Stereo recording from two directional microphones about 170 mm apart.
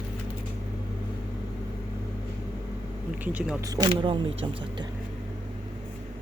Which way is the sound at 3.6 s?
20° right (ahead or behind).